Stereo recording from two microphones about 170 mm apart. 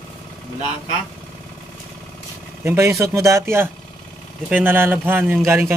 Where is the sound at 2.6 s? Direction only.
15° right (ahead or behind).